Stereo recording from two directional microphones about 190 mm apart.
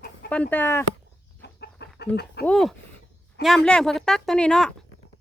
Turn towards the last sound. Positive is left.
turn(degrees=5)  # may be behind; listen again after turning